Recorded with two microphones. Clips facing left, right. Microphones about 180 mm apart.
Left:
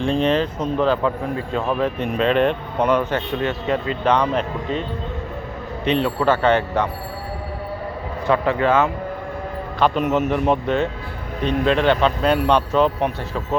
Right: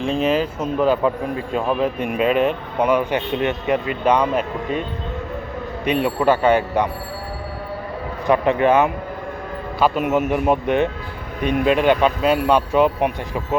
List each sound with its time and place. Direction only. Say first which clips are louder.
0.0 s speech: even; 5° right (ahead or behind)
5.8 s speech: right 1 dB; 10° right (ahead or behind)
8.3 s speech: right 2 dB; 20° right (ahead or behind)
9.8 s speech: even; 5° right (ahead or behind)